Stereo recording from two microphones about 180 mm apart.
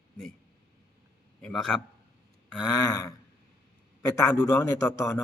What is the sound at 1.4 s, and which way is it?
Speech, 5° left (ahead or behind).